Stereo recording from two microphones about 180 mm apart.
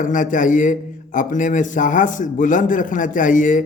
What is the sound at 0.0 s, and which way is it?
A man's voice, 45° left (ahead or behind).